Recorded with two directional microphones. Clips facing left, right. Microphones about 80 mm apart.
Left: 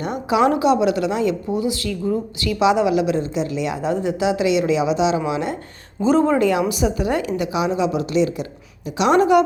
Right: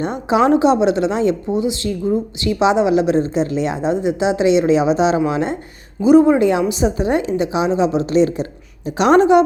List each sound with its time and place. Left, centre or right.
0.0 s a woman's voice: right
6.0 s a woman's voice: centre; by 9.2 s right